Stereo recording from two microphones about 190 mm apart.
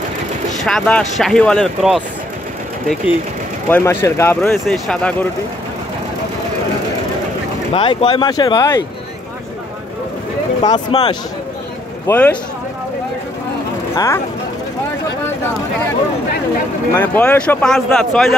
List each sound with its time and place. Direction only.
0.7 s speech: 5° left (ahead or behind)
3.6 s speech: 10° left (ahead or behind)
7.7 s speech: 30° left (ahead or behind)
10.6 s speech: 20° left (ahead or behind)
12.1 s speech: 5° left (ahead or behind)
13.9 s speech: 15° left (ahead or behind)
16.9 s speech: 10° left (ahead or behind)